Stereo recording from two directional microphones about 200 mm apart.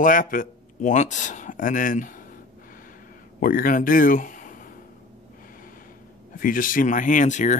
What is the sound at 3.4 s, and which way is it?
Speech, 45° left (ahead or behind).